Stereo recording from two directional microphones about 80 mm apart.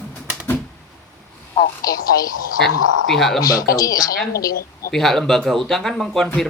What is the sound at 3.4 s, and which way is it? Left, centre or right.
Speech, left.